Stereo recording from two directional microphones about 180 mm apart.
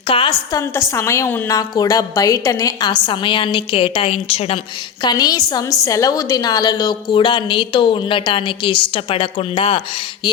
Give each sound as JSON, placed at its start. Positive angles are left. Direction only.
{"t": 0.1, "sound": "a woman's voice", "side_deg": 25}
{"t": 0.7, "sound": "a woman's voice", "side_deg": 15}
{"t": 10.2, "sound": "a sound", "side_deg": 25}